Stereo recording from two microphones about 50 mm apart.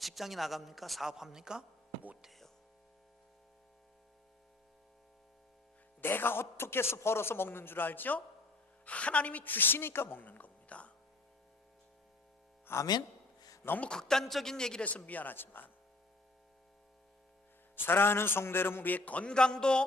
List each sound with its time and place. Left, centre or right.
0.0 s a man's voice: centre
6.0 s a man's voice: left
8.8 s a woman's voice: left
12.7 s a man's voice: left
13.8 s a woman's voice: centre
14.8 s speech: left
17.8 s a man's voice: left
19.3 s a woman's voice: centre